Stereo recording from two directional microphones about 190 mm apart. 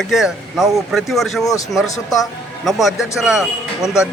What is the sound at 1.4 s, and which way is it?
Speech, 15° left (ahead or behind).